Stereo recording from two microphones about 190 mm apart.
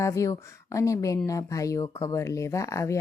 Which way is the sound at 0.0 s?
15° left (ahead or behind).